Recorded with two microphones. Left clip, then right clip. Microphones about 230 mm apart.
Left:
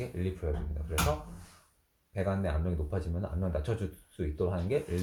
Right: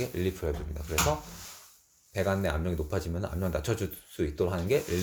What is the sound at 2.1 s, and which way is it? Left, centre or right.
Speech, right.